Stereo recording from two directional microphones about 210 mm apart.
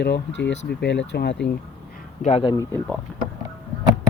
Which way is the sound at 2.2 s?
25° left (ahead or behind).